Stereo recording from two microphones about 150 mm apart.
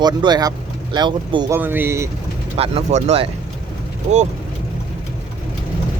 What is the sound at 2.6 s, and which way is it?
Speech, 45° right (ahead or behind).